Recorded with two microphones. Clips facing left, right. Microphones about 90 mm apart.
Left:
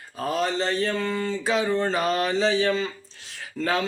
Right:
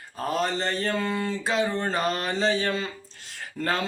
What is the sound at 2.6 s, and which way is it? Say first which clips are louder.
Speech: left 4 dB; 5° right (ahead or behind).